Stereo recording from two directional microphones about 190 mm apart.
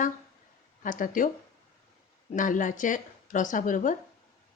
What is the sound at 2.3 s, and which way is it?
A woman's voice, 45° left (ahead or behind).